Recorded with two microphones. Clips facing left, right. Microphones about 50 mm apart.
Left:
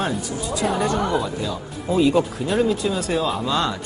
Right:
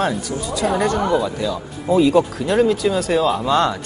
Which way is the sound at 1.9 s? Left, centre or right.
Right.